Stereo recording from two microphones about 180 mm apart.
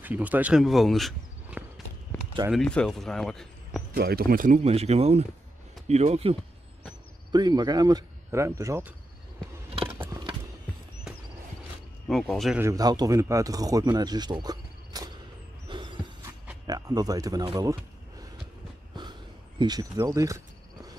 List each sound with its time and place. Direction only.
0.0 s speech: 10° right (ahead or behind)
3.9 s speech: 55° right (ahead or behind)
4.6 s speech: 35° right (ahead or behind)
7.3 s speech: 20° right (ahead or behind)
9.9 s mechanisms: 20° right (ahead or behind)
12.1 s speech: centre (ahead or behind)
12.5 s speech: 15° right (ahead or behind)
15.7 s a sound: 25° right (ahead or behind)
16.6 s speech: 20° right (ahead or behind)
19.6 s speech: 20° right (ahead or behind)